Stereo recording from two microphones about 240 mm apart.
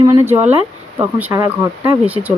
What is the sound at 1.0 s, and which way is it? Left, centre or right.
Speech, centre.